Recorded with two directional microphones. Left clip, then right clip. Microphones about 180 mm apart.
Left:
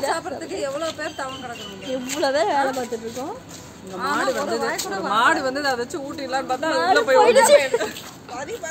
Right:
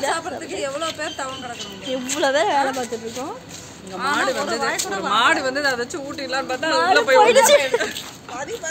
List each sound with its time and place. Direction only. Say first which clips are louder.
0.1 s a woman's voice: right 1 dB; 10° left (ahead or behind)
2.1 s speech: right 2 dB; 10° right (ahead or behind)
4.0 s a woman's voice: right 1 dB; 20° left (ahead or behind)
4.6 s speech: right 2 dB; 5° left (ahead or behind)
5.1 s speech: right 1 dB; 25° left (ahead or behind)
7.2 s speech: even; 5° right (ahead or behind)